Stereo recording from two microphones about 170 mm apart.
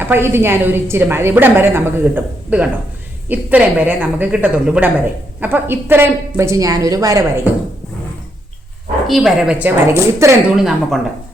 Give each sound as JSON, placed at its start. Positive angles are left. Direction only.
{"t": 0.0, "sound": "a woman's voice", "side_deg": -15}
{"t": 9.0, "sound": "a woman's voice", "side_deg": 0}
{"t": 10.5, "sound": "a woman's voice", "side_deg": 0}